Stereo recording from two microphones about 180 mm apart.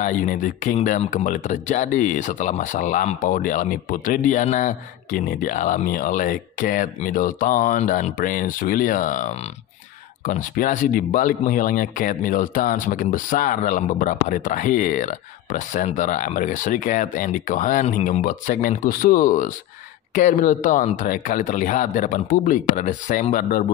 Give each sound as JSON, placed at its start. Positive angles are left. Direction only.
{"t": 0.0, "sound": "speech", "side_deg": 45}